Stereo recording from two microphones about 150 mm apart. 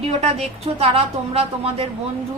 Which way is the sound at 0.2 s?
40° right (ahead or behind).